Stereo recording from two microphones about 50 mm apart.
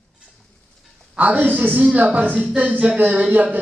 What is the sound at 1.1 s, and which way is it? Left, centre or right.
A man's voice, right.